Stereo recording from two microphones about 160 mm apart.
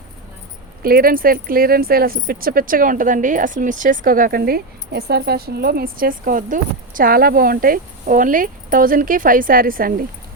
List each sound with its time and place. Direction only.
0.8 s speech: 65° right (ahead or behind)